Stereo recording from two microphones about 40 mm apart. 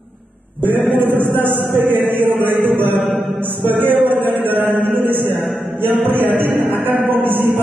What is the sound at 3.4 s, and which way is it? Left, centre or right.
Mantra, right.